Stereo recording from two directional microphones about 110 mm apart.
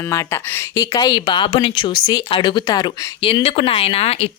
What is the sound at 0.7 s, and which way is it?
Speech, 35° left (ahead or behind).